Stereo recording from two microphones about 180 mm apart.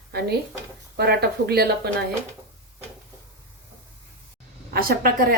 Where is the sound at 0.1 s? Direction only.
60° right (ahead or behind).